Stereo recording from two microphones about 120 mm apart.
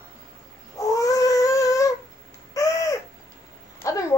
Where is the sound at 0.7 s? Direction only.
30° left (ahead or behind).